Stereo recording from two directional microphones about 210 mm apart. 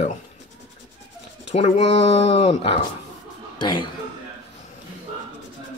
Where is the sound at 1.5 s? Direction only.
30° left (ahead or behind).